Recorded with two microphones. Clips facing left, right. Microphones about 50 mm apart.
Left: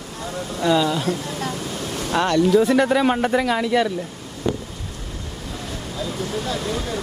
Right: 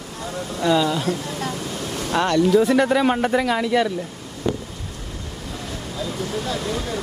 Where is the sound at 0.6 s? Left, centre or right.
Left.